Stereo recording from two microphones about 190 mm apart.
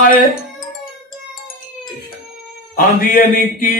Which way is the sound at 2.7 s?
45° left (ahead or behind).